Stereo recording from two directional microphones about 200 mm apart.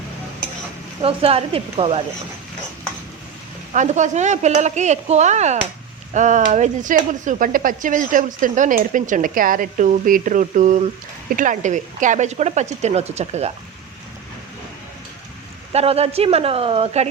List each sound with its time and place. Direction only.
1.0 s speech: 30° right (ahead or behind)
3.7 s a woman's voice: 35° right (ahead or behind)
15.7 s speech: 30° right (ahead or behind)